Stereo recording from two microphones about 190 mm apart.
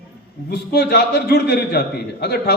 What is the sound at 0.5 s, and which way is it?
A man's voice, 60° left (ahead or behind).